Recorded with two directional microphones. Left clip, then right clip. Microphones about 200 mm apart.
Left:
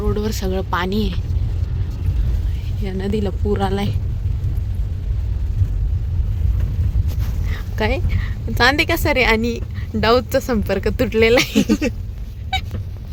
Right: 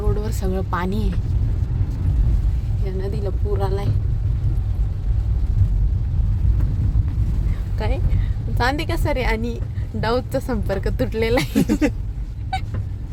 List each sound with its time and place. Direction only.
0.1 s speech: centre (ahead or behind)
2.8 s a woman's voice: 15° left (ahead or behind)
7.8 s a woman's voice: 10° left (ahead or behind)
12.5 s fowl: 5° right (ahead or behind)